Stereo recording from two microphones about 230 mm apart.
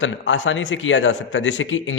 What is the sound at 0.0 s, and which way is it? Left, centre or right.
A man's voice, left.